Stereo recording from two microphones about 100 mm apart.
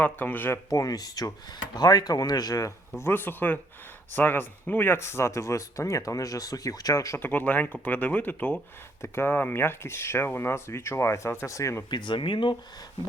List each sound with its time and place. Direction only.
0.0 s speech: 20° left (ahead or behind)
0.7 s speech: 35° left (ahead or behind)
3.0 s speech: 20° left (ahead or behind)
7.2 s speech: 20° left (ahead or behind)
11.9 s speech: 50° left (ahead or behind)